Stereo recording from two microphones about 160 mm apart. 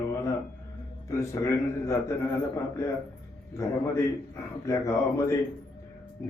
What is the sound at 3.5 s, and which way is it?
A man's voice, 15° left (ahead or behind).